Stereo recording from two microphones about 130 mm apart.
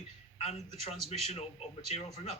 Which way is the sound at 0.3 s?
55° left (ahead or behind).